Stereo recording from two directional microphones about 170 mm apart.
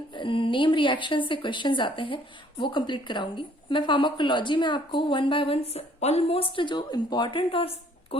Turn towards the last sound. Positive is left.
turn(degrees=30)  # may be behind; listen again after turning